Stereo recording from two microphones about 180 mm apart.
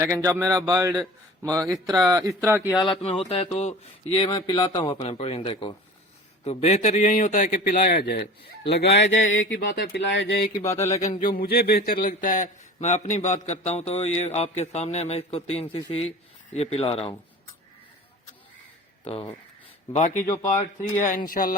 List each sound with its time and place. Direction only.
0.0 s a man's voice: 15° right (ahead or behind)
2.8 s a man's voice: 30° left (ahead or behind)
8.0 s speech: 65° left (ahead or behind)
8.7 s a sound: 70° left (ahead or behind); by 9.6 s 90° left
9.6 s speech: 70° left (ahead or behind)
11.2 s a man's voice: 55° left (ahead or behind); by 17.2 s 30° left (ahead or behind)
19.0 s a man's voice: 30° left (ahead or behind)
19.9 s a man's voice: 45° left (ahead or behind)
20.2 s speech: 15° left (ahead or behind)
21.0 s a man's voice: 50° left (ahead or behind)